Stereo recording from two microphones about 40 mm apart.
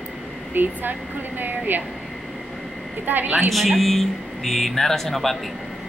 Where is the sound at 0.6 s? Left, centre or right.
Right.